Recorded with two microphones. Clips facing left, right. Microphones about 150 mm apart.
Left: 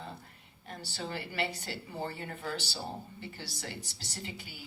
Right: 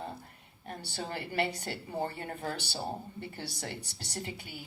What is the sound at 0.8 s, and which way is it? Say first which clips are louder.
A woman's voice: even; 60° right (ahead or behind).